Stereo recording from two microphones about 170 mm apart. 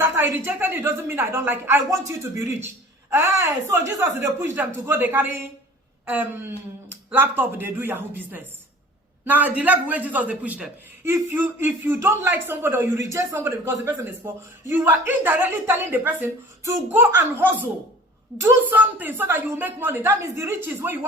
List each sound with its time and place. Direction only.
0.0 s a man's voice: 15° right (ahead or behind)
3.1 s a man's voice: 15° right (ahead or behind)
18.7 s a man's voice: 10° right (ahead or behind)